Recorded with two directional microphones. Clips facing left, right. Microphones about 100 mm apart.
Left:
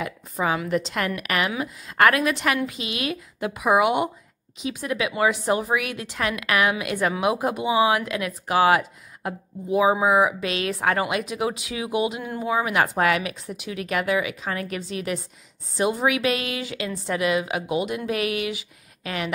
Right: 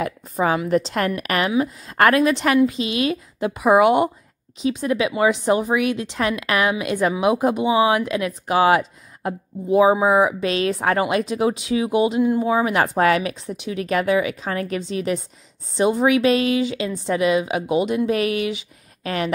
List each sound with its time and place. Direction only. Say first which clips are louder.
0.0 s a sound: right 5 dB; 40° right (ahead or behind)
0.7 s a woman's voice: right 5 dB; 40° right (ahead or behind)
12.2 s speech: right 12 dB; 15° right (ahead or behind)
12.4 s a woman's voice: right 3 dB; 30° right (ahead or behind)